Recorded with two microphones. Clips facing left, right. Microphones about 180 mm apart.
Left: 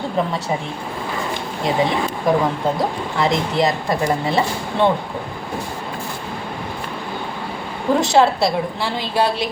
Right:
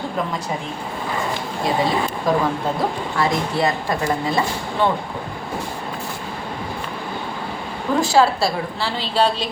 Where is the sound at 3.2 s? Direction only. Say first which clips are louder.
Left 2 dB; 20° left (ahead or behind).